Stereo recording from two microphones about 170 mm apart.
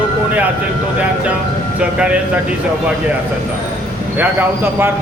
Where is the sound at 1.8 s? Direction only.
5° right (ahead or behind).